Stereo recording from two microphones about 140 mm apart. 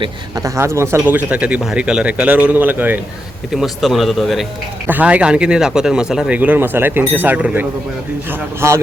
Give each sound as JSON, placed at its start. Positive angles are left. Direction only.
{"t": 0.0, "sound": "speech", "side_deg": -25}
{"t": 3.5, "sound": "a man's voice", "side_deg": 0}
{"t": 4.9, "sound": "a man's voice", "side_deg": -10}